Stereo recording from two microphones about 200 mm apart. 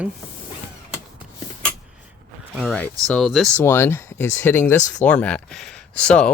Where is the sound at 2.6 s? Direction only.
5° left (ahead or behind).